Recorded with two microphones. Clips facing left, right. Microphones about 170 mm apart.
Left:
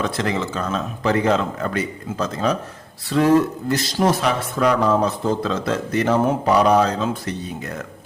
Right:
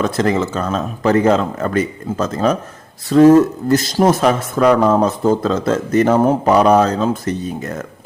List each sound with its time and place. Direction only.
0.0 s speech: 45° right (ahead or behind)